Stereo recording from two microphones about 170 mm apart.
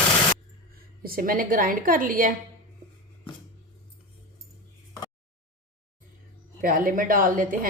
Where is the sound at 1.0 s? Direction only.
60° right (ahead or behind).